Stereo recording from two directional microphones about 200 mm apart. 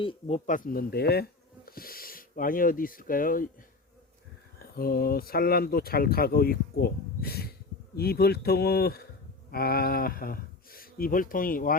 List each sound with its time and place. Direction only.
0.0 s speech: 30° left (ahead or behind); by 3.5 s 45° left (ahead or behind)
4.8 s speech: 50° left (ahead or behind)